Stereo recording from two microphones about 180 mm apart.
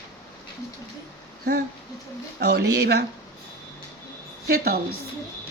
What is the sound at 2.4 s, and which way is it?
Speech, 65° right (ahead or behind).